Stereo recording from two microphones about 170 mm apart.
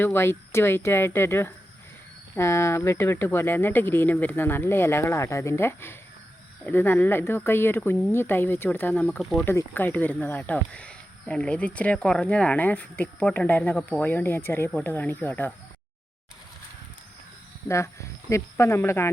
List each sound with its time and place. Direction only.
0.0 s speech: 15° left (ahead or behind)
17.7 s speech: 15° left (ahead or behind)